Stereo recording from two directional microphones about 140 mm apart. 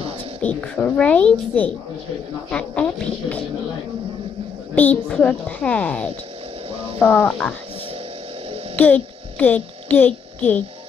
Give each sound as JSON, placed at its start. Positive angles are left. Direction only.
{"t": 0.4, "sound": "a child's voice", "side_deg": 10}
{"t": 4.7, "sound": "a child's voice", "side_deg": 10}
{"t": 6.7, "sound": "a sound", "side_deg": -45}
{"t": 7.0, "sound": "a child's voice", "side_deg": 15}
{"t": 8.7, "sound": "a child's voice", "side_deg": 10}